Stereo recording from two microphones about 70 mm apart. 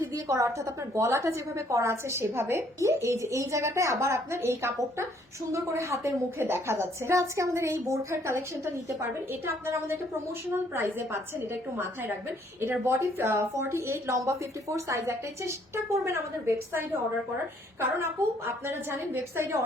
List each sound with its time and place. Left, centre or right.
0.0 s a woman's voice: right
9.6 s a woman's voice: right
12.5 s a woman's voice: right
18.6 s a woman's voice: right